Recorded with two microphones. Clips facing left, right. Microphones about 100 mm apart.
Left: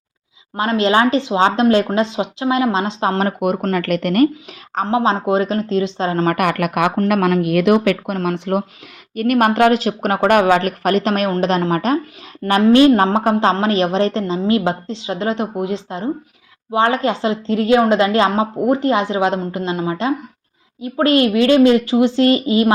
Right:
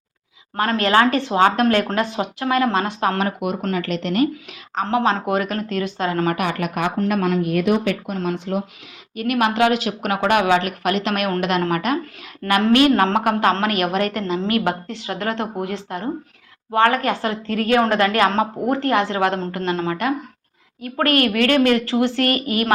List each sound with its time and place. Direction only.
0.5 s a woman's voice: 20° left (ahead or behind)
3.2 s speech: 45° left (ahead or behind)
4.9 s a woman's voice: 20° left (ahead or behind)
6.3 s speech: 60° left (ahead or behind)
9.1 s a woman's voice: 45° left (ahead or behind); by 22.7 s 20° left (ahead or behind)